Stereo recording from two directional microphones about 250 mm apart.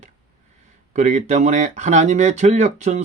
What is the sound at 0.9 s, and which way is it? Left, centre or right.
Speech, right.